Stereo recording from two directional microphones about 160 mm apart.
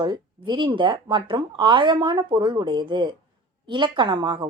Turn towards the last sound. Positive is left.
turn(degrees=-30)  # may be behind; listen again after turning